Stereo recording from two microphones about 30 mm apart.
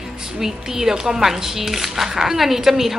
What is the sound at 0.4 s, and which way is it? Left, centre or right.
A woman's voice, centre.